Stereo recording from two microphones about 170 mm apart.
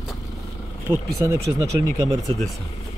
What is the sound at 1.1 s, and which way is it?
Speech, 20° right (ahead or behind).